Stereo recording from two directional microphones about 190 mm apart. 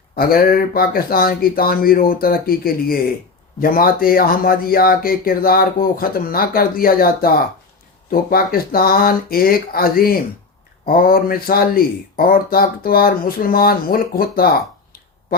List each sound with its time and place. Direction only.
0.2 s speech: 50° left (ahead or behind)